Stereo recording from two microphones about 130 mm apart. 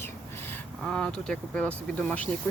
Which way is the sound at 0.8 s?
5° left (ahead or behind).